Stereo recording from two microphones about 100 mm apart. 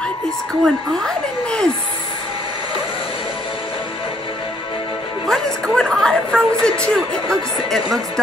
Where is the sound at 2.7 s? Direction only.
70° left (ahead or behind).